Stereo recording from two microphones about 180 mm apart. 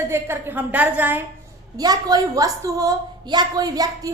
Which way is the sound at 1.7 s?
20° right (ahead or behind).